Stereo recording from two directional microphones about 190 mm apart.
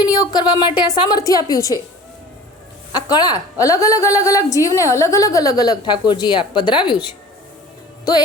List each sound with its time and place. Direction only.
0.0 s a woman's voice: 20° left (ahead or behind)
2.9 s a woman's voice: 20° left (ahead or behind)